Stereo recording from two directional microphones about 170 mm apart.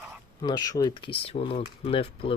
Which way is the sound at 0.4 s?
25° left (ahead or behind).